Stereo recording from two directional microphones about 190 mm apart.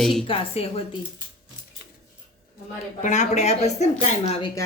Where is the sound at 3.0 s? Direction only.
40° left (ahead or behind).